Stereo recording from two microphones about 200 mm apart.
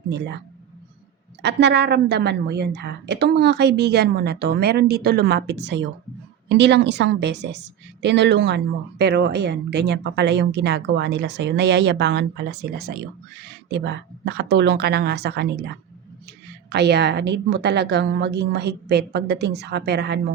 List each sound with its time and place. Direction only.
0.1 s speech: 60° right (ahead or behind)
1.4 s speech: 60° right (ahead or behind)